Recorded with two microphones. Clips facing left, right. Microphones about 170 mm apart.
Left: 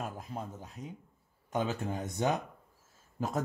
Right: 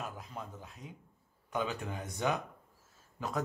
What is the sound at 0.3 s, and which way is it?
Speech, 40° left (ahead or behind).